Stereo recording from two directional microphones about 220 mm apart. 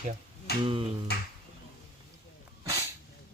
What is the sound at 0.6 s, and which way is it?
Speech, 25° right (ahead or behind).